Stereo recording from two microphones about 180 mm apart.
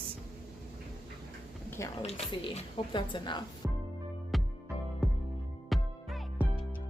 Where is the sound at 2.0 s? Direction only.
35° left (ahead or behind).